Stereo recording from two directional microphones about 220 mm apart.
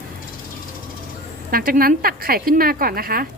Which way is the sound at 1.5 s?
40° right (ahead or behind).